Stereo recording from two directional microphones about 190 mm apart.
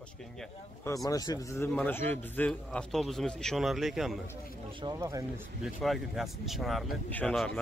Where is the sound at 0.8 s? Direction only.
20° left (ahead or behind); by 4.2 s centre (ahead or behind).